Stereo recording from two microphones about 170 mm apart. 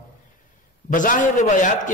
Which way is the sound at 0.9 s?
50° left (ahead or behind).